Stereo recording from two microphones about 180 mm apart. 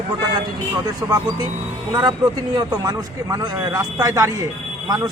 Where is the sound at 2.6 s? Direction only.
20° right (ahead or behind).